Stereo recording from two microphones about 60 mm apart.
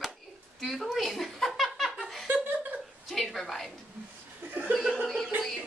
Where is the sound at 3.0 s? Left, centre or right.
Centre.